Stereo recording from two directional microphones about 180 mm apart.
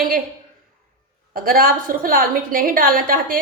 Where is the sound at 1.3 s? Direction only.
55° right (ahead or behind).